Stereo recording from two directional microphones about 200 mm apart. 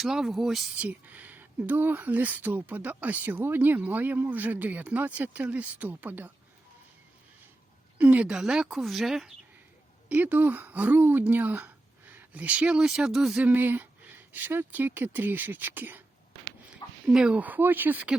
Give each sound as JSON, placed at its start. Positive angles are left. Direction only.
{"t": 0.0, "sound": "speech", "side_deg": 0}
{"t": 7.9, "sound": "speech", "side_deg": -5}
{"t": 17.1, "sound": "speech", "side_deg": -5}